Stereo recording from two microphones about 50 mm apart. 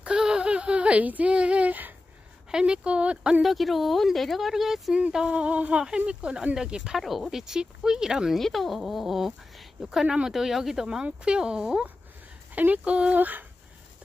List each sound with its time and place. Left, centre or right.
0.0 s a sound: centre; by 2.0 s right
2.5 s speech: centre
3.4 s speech: centre
5.1 s speech: right
7.0 s speech: centre
8.3 s speech: centre
10.0 s speech: centre
10.3 s speech: centre
12.5 s speech: right
12.9 s speech: right
13.2 s speech: right